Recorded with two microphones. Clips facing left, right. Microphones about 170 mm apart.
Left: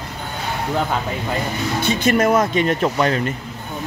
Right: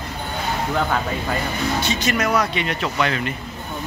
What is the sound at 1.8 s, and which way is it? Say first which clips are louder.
Speech: left 5 dB; 55° left (ahead or behind).